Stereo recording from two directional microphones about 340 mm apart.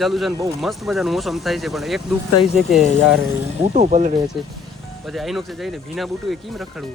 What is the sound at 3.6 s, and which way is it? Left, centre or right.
Speech, centre.